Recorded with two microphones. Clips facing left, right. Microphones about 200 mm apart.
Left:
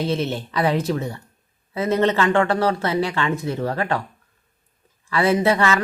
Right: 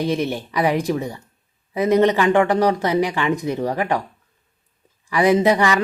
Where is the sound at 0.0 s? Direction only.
15° right (ahead or behind).